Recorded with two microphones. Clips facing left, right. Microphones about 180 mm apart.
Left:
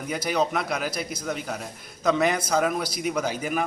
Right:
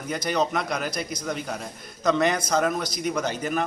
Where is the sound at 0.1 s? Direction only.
5° left (ahead or behind).